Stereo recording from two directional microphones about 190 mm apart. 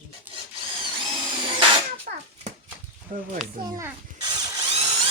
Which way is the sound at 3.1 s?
40° right (ahead or behind).